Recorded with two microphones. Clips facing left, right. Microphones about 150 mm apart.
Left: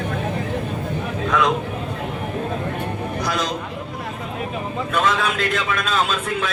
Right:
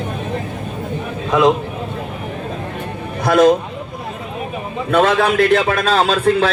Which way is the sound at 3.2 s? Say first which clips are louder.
Right 15 dB; 55° right (ahead or behind).